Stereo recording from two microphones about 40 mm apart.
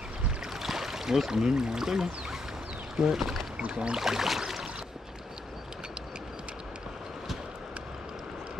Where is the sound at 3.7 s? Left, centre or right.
Right.